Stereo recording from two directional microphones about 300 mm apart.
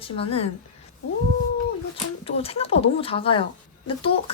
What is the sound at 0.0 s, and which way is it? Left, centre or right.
Speech, centre.